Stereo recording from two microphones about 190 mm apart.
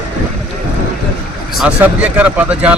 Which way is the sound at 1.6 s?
5° right (ahead or behind).